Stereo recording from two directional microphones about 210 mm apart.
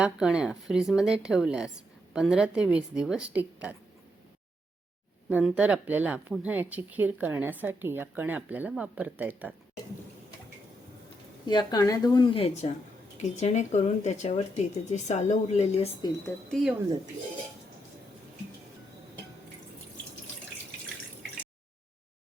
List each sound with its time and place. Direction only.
0.0 s speech: 5° right (ahead or behind)
5.3 s speech: 5° right (ahead or behind)
11.4 s speech: 20° left (ahead or behind)
16.5 s speech: centre (ahead or behind)